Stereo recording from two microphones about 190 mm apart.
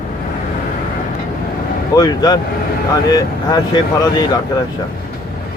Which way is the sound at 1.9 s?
20° left (ahead or behind).